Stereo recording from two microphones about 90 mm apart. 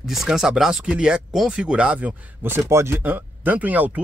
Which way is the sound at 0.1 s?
5° right (ahead or behind).